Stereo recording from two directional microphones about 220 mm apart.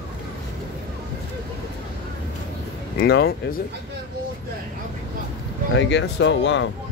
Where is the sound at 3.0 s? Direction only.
45° left (ahead or behind).